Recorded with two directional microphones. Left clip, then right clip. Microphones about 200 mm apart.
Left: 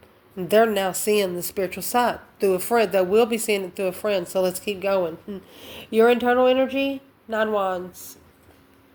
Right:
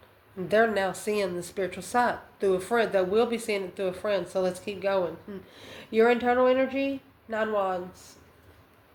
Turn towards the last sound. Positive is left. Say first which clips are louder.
# left 4 dB
turn(degrees=40)  # may be behind; listen again after turning